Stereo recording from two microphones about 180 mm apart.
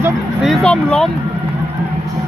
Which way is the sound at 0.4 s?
5° left (ahead or behind).